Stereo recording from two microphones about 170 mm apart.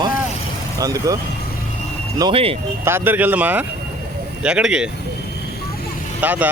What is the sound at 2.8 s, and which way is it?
Speech, 15° right (ahead or behind).